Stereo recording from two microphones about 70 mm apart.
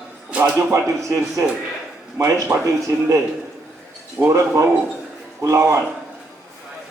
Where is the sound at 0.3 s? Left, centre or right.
Right.